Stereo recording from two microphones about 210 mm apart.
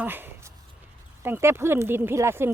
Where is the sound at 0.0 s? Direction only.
10° right (ahead or behind).